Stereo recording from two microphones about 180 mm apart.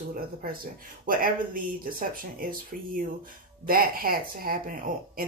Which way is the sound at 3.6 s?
55° right (ahead or behind).